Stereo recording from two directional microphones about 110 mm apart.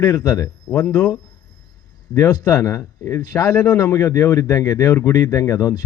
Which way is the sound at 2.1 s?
30° left (ahead or behind).